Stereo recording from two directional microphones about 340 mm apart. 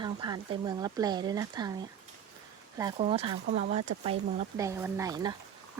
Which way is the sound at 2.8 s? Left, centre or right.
Centre.